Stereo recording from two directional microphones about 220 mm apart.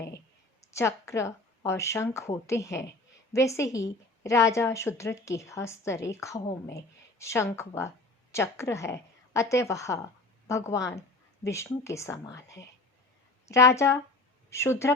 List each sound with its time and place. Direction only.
0.7 s a woman's voice: 15° left (ahead or behind)